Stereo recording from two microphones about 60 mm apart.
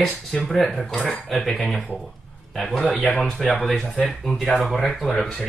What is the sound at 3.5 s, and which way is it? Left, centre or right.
Speech, centre.